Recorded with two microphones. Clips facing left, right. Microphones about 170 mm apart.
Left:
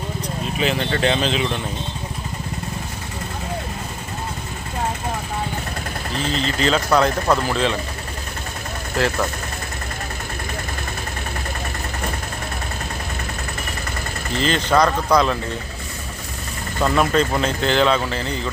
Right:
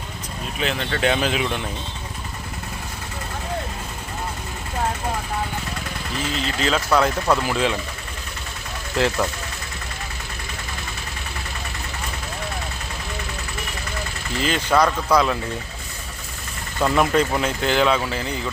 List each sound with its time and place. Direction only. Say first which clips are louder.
0.6 s speech: left 2 dB; 5° left (ahead or behind)
6.2 s speech: left 3 dB; 35° left (ahead or behind)
6.6 s speech: left 2 dB; 5° right (ahead or behind)
14.4 s speech: left 1 dB; 5° right (ahead or behind)
16.8 s speech: even; 15° right (ahead or behind)